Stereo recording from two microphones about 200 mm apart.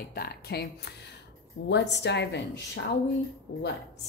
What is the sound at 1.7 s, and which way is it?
A woman's voice, 60° left (ahead or behind).